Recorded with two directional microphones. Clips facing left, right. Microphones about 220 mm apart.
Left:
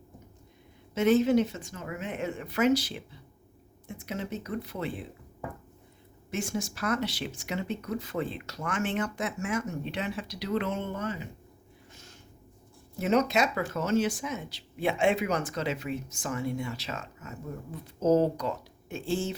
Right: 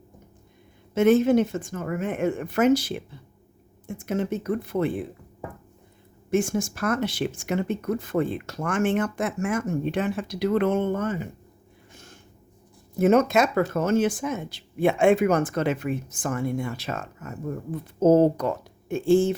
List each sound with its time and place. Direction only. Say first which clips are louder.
0.9 s speech: right 5 dB; 50° right (ahead or behind)
6.3 s speech: right 9 dB; 50° right (ahead or behind)
11.9 s a sound: right 6 dB; 55° right (ahead or behind)
13.0 s speech: right 6 dB; 50° right (ahead or behind)